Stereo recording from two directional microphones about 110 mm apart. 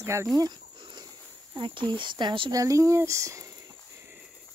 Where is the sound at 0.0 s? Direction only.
25° right (ahead or behind).